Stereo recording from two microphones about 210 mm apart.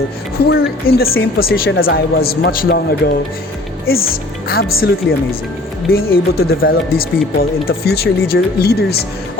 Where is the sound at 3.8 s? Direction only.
45° left (ahead or behind).